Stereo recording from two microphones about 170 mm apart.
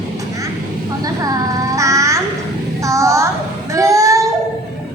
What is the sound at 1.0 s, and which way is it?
Child singing, 20° right (ahead or behind).